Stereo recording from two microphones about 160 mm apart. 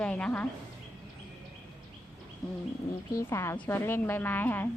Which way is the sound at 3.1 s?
20° left (ahead or behind).